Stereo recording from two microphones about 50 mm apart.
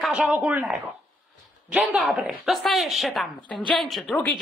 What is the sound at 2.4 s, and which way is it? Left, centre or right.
Speech, centre.